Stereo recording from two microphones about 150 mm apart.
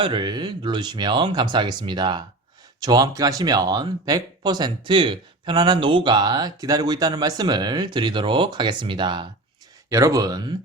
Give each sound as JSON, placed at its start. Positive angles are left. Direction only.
{"t": 0.0, "sound": "speech", "side_deg": -30}